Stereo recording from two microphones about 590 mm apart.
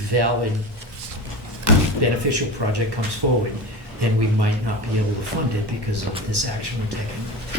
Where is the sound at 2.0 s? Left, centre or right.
Right.